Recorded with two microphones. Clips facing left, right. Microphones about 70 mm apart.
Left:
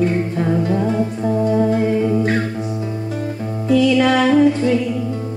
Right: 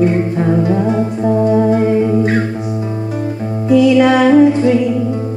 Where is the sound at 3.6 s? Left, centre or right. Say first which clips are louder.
Right 5 dB; centre.